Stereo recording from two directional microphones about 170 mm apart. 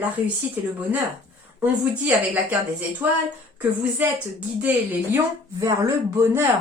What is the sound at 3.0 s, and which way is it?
A woman's voice, 10° right (ahead or behind).